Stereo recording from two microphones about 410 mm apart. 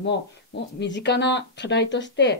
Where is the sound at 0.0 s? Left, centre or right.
Left.